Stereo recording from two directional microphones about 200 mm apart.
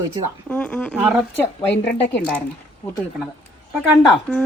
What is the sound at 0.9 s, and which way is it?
Speech, 5° right (ahead or behind).